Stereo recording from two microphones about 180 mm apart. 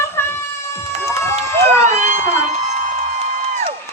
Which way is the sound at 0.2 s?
15° left (ahead or behind).